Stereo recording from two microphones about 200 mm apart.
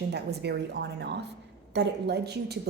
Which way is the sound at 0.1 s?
55° right (ahead or behind).